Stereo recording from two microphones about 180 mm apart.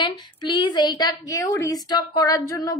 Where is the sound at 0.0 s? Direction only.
25° left (ahead or behind).